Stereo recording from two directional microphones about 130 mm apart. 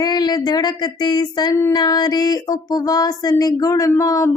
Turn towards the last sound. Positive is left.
turn(degrees=25)  # may be behind; listen again after turning